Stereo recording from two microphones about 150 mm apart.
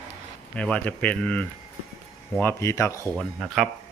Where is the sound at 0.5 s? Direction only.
10° left (ahead or behind).